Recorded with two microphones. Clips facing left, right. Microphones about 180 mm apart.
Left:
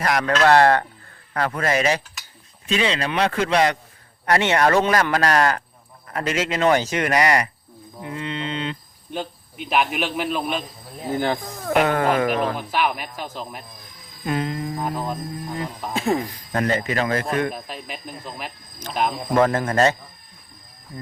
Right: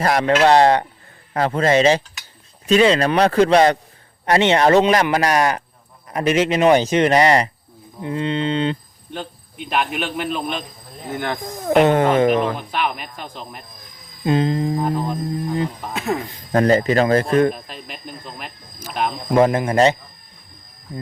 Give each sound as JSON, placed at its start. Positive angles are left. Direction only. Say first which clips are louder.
{"t": 0.0, "sound": "speech", "louder": "right 3 dB", "side_deg": -25}
{"t": 2.2, "sound": "a sound", "louder": "even", "side_deg": 0}
{"t": 2.6, "sound": "speech", "louder": "right 8 dB", "side_deg": -45}
{"t": 4.3, "sound": "speech", "louder": "right 4 dB", "side_deg": -20}
{"t": 9.1, "sound": "a man's voice", "louder": "left 1 dB", "side_deg": 5}
{"t": 11.1, "sound": "speech", "louder": "left 2 dB", "side_deg": 30}
{"t": 11.6, "sound": "speech", "louder": "right 5 dB", "side_deg": -30}
{"t": 12.3, "sound": "a man's voice", "louder": "right 3 dB", "side_deg": 0}
{"t": 14.3, "sound": "speech", "louder": "right 7 dB", "side_deg": -30}
{"t": 15.9, "sound": "speech", "louder": "left 1 dB", "side_deg": 30}
{"t": 16.3, "sound": "speech", "louder": "right 7 dB", "side_deg": -35}
{"t": 17.5, "sound": "a man's voice", "louder": "even", "side_deg": 5}
{"t": 19.3, "sound": "speech", "louder": "right 4 dB", "side_deg": -15}